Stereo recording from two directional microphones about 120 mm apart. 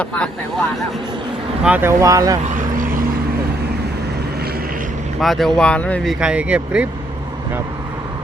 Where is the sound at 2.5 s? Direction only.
90° right.